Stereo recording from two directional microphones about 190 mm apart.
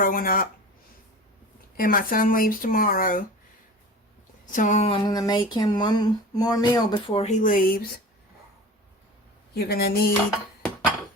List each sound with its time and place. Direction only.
0.0 s speech: 45° left (ahead or behind)
1.7 s speech: 50° left (ahead or behind)
4.5 s speech: 40° left (ahead or behind)
5.0 s speech: 20° left (ahead or behind)
7.1 s speech: 35° left (ahead or behind)
9.6 s speech: 55° left (ahead or behind)